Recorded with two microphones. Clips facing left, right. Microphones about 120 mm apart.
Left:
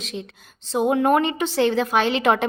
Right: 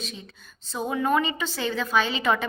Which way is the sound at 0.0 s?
85° left.